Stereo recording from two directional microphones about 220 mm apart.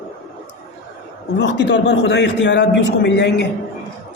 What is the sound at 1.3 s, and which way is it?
A man's voice, 55° left (ahead or behind).